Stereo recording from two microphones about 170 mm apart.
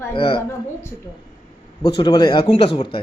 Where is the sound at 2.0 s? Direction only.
25° left (ahead or behind).